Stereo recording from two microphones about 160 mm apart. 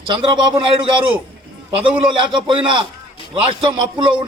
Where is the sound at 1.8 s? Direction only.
30° right (ahead or behind).